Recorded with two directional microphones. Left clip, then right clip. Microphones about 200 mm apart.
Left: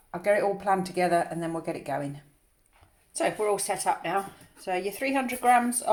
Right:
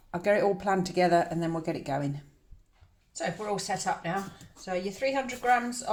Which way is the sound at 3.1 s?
40° left (ahead or behind).